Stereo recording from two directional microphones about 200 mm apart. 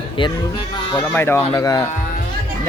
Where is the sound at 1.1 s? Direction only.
10° left (ahead or behind).